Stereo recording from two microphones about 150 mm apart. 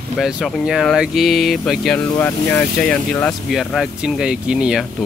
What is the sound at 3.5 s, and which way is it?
Speech, centre (ahead or behind).